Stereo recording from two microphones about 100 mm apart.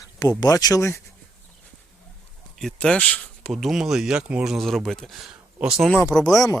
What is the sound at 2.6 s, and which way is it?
Speech, 5° left (ahead or behind).